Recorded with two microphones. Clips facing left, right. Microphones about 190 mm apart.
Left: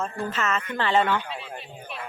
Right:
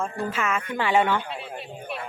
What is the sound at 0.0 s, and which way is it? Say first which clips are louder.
Speech: right 1 dB; 10° right (ahead or behind).